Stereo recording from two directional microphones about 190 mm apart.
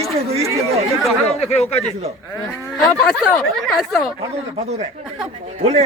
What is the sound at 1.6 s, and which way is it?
Speech, 35° left (ahead or behind).